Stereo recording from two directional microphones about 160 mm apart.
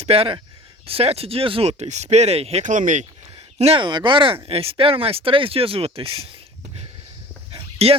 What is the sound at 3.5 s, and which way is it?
Speech, 35° right (ahead or behind).